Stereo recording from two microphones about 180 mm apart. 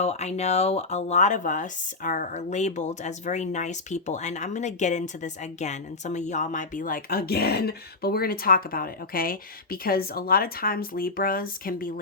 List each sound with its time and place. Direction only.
0.0 s speech: 35° left (ahead or behind); by 11.9 s 50° left (ahead or behind)